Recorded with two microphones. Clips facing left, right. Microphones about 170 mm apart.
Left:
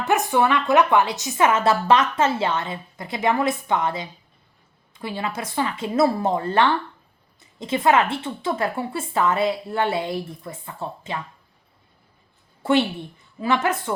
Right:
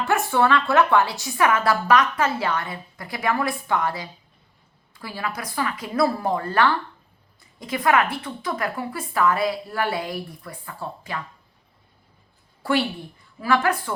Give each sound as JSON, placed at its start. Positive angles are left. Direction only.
{"t": 0.0, "sound": "a woman's voice", "side_deg": 20}
{"t": 12.6, "sound": "a woman's voice", "side_deg": 25}